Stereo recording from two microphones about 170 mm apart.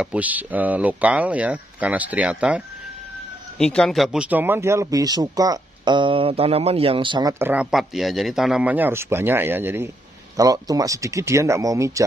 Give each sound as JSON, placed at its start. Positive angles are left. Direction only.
{"t": 0.0, "sound": "speech", "side_deg": -10}
{"t": 3.5, "sound": "speech", "side_deg": 5}
{"t": 7.3, "sound": "speech", "side_deg": -15}
{"t": 7.7, "sound": "speech", "side_deg": 0}